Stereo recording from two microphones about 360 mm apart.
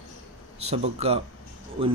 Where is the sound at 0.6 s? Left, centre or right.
Centre.